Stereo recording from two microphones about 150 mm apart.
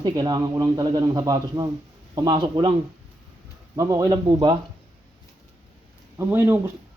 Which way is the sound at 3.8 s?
20° right (ahead or behind).